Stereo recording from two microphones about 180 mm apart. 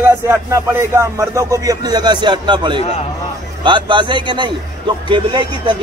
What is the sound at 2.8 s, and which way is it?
Speech, 30° left (ahead or behind).